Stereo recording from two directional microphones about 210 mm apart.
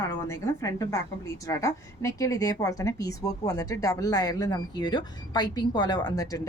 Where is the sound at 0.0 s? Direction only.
15° left (ahead or behind).